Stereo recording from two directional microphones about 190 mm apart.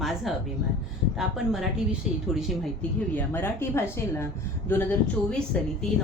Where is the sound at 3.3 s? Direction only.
15° left (ahead or behind).